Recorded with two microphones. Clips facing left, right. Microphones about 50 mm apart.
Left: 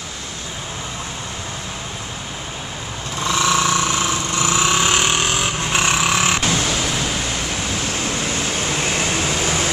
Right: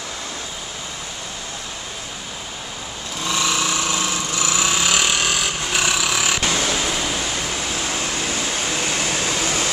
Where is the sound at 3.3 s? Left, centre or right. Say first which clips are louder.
Left 4 dB; left.